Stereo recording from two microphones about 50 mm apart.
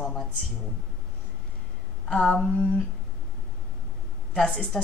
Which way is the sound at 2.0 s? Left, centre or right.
Left.